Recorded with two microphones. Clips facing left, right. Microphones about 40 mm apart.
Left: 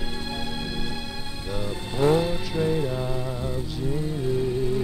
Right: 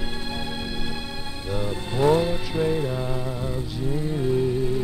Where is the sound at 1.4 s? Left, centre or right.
Centre.